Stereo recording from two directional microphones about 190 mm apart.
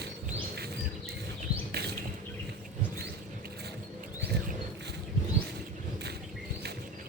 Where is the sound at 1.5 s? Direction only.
20° left (ahead or behind).